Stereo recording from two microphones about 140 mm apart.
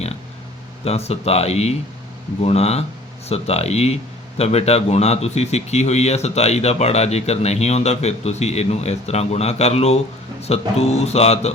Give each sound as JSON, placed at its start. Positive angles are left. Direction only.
{"t": 0.9, "sound": "a man's voice", "side_deg": 50}